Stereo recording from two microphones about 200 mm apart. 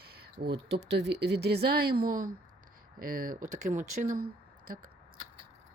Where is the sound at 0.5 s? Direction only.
60° right (ahead or behind).